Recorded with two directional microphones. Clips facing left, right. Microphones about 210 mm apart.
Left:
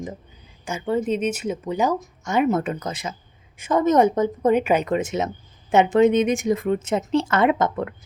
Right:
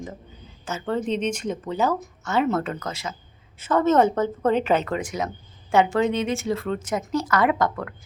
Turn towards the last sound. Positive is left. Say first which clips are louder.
# left 2 dB
turn(degrees=20)  # may be behind; listen again after turning